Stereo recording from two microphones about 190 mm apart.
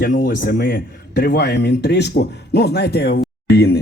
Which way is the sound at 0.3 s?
50° left (ahead or behind).